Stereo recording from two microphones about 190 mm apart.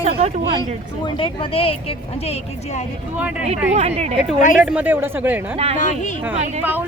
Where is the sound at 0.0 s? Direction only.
35° right (ahead or behind).